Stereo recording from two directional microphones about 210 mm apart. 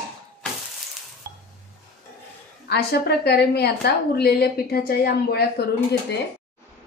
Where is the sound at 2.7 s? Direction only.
50° left (ahead or behind).